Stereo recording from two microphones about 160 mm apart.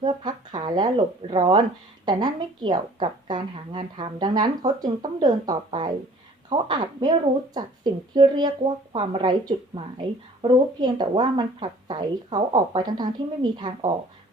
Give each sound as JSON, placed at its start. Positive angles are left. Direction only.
{"t": 0.0, "sound": "speech", "side_deg": -30}